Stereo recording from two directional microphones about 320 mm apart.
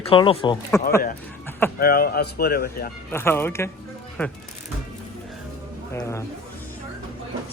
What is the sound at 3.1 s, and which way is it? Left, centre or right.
Speech, centre.